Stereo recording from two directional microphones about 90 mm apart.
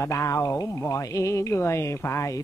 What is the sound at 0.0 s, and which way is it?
Speech, 35° left (ahead or behind).